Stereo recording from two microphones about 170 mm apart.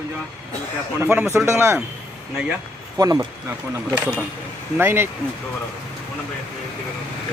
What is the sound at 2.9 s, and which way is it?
Speech, 20° right (ahead or behind).